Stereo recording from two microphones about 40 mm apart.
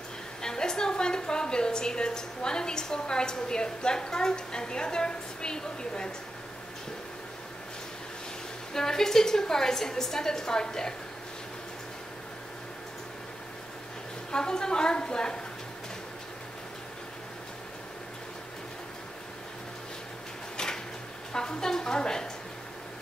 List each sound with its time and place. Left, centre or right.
0.4 s a woman's voice: centre
8.7 s a woman's voice: centre
14.3 s a woman's voice: centre
20.5 s a sound: centre
21.3 s a woman's voice: centre